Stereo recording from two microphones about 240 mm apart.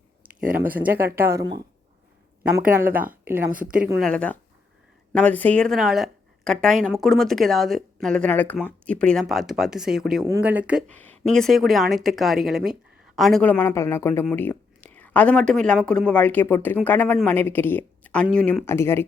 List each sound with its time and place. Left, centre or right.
0.5 s speech: centre
3.5 s a woman's voice: right
4.0 s speech: centre